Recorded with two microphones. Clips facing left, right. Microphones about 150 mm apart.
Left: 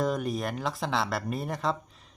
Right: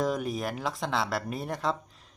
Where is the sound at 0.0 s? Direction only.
Centre (ahead or behind).